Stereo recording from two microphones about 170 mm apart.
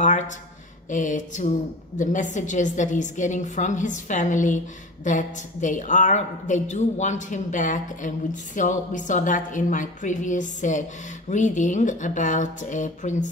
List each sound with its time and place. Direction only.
0.8 s a woman's voice: 50° left (ahead or behind)